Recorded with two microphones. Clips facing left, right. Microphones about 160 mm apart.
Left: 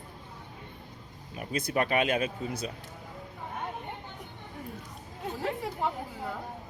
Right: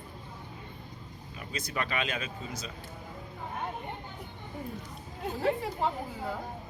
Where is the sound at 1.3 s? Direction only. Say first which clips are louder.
Left 6 dB; 50° left (ahead or behind).